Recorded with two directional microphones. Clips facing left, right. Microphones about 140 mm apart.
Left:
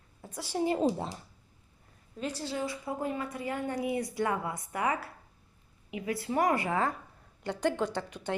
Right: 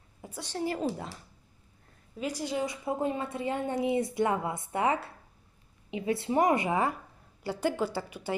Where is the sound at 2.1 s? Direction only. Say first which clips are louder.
Right 3 dB; 10° right (ahead or behind).